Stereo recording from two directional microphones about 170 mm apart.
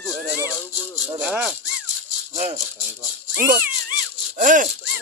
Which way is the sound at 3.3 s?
60° right (ahead or behind).